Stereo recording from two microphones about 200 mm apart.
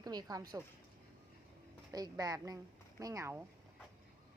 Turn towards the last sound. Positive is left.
turn(degrees=-15)  # may be behind; listen again after turning